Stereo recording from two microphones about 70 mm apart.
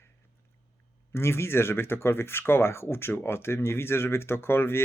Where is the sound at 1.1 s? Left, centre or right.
Left.